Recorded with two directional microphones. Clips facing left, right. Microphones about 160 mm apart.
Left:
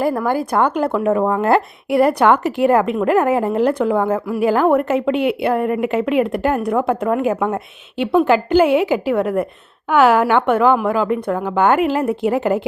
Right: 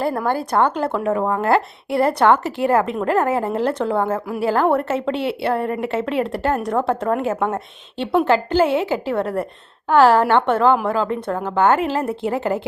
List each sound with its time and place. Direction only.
0.3 s a woman's voice: 10° left (ahead or behind)